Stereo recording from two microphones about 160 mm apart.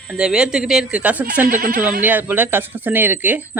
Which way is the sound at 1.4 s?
55° right (ahead or behind).